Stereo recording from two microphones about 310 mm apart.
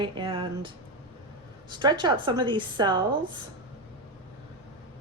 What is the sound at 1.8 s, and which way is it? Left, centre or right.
A woman's voice, centre.